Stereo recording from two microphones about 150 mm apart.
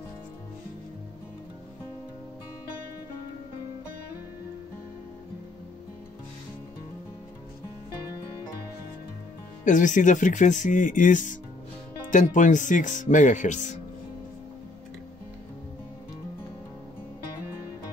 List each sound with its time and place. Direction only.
9.7 s speech: 60° left (ahead or behind)